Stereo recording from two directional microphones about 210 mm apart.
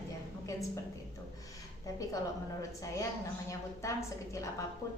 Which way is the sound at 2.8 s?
15° left (ahead or behind).